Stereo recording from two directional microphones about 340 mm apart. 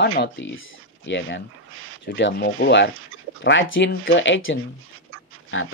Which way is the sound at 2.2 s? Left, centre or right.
Left.